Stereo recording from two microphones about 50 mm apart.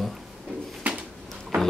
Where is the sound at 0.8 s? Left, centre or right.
Right.